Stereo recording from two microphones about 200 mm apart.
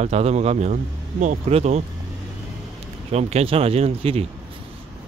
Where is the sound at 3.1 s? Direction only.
30° right (ahead or behind).